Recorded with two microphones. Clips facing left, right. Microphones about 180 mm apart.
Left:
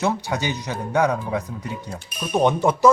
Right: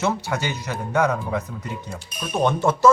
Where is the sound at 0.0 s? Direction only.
15° left (ahead or behind).